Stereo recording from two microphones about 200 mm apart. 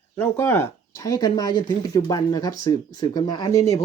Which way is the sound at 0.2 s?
15° left (ahead or behind).